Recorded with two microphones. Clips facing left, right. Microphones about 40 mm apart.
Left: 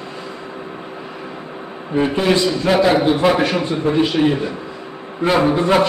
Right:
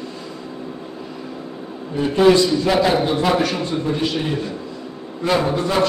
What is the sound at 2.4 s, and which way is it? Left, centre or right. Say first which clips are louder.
A man's voice: left 1 dB; centre.